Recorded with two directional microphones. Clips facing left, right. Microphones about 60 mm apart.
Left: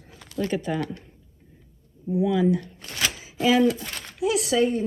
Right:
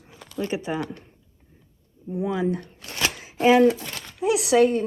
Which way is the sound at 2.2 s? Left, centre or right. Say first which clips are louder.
Left 3 dB; right.